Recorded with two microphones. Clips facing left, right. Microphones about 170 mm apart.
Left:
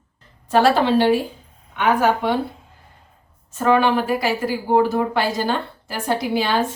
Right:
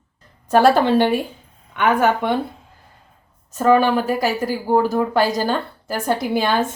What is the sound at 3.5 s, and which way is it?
Speech, 40° right (ahead or behind).